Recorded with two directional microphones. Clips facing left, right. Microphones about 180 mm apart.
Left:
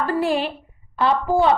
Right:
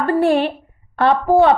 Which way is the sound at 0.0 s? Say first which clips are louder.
Right 6 dB; 55° right (ahead or behind).